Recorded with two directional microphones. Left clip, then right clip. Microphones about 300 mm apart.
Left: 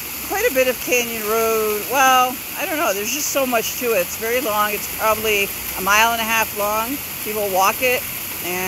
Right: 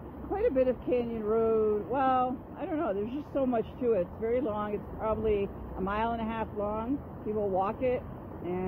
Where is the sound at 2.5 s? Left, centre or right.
Centre.